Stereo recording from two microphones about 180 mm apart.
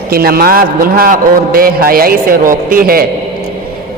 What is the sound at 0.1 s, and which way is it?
A man's voice, 55° right (ahead or behind).